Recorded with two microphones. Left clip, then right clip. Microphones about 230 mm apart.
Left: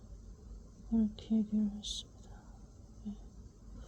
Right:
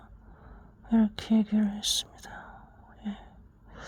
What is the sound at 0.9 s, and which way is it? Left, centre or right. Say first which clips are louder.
Speech: right 8 dB; right.